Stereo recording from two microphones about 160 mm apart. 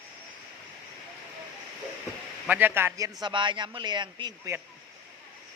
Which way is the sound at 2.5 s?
10° right (ahead or behind).